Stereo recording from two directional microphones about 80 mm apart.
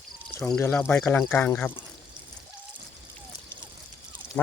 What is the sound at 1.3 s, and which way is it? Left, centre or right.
Speech, left.